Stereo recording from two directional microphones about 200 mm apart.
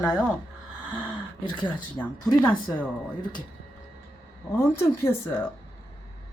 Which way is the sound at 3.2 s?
20° left (ahead or behind).